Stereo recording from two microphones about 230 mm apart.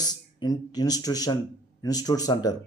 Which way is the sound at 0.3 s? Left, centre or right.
Centre.